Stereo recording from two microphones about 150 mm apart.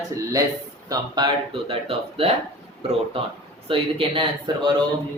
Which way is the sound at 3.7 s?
35° right (ahead or behind).